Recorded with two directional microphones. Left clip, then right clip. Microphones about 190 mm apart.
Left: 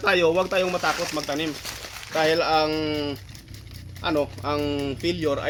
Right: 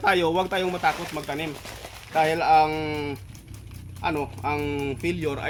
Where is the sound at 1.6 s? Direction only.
60° left (ahead or behind).